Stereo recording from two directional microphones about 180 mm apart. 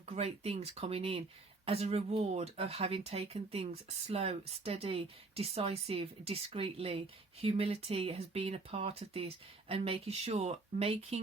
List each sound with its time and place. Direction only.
0.0 s speech: 35° right (ahead or behind)